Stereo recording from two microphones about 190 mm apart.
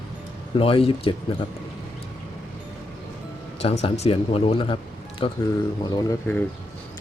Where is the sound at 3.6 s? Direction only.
30° left (ahead or behind).